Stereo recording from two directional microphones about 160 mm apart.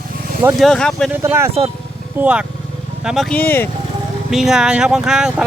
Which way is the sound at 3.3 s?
15° left (ahead or behind).